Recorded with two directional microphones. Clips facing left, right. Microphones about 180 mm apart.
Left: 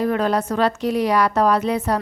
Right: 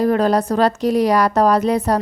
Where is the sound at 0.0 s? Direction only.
40° right (ahead or behind).